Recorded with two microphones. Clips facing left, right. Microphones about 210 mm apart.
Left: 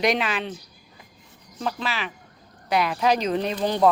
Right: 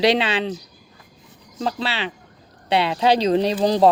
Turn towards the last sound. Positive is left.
turn(degrees=-35)  # may be behind; listen again after turning